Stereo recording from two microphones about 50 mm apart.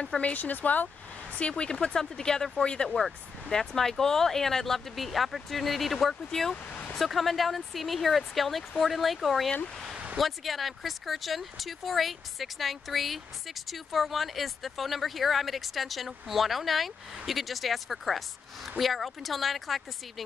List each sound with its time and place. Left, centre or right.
0.2 s speech: left
1.6 s speech: centre
2.6 s speech: centre
2.9 s speech: centre
6.5 s a sound: left
7.0 s speech: centre